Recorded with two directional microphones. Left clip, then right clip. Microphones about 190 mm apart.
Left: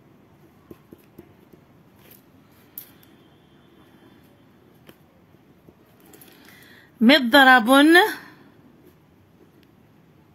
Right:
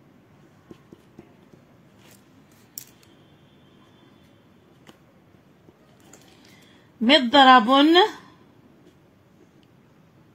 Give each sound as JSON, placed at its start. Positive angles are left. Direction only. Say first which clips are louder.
{"t": 7.0, "sound": "a woman's voice", "louder": "left 1 dB", "side_deg": 30}